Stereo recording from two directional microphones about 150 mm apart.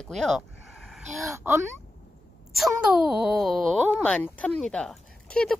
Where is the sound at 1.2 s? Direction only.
20° right (ahead or behind).